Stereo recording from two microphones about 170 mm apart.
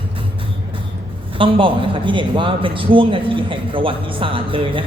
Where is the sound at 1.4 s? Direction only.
30° right (ahead or behind).